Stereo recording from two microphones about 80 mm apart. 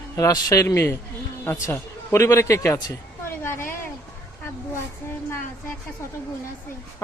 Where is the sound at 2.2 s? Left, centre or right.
Left.